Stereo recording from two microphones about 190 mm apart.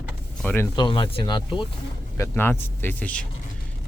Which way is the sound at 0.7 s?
25° left (ahead or behind).